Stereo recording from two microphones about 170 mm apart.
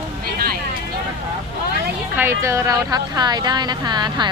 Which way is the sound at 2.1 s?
15° right (ahead or behind).